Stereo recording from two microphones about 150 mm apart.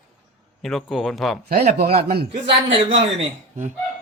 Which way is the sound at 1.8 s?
90° right.